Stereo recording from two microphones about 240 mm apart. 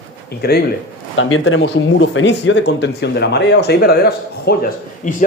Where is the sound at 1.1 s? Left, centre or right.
Left.